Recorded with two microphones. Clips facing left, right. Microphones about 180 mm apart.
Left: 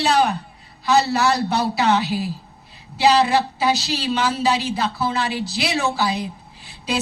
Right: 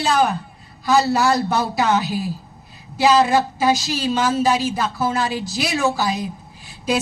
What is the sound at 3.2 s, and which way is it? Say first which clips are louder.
A woman's voice: right 2 dB; 45° right (ahead or behind).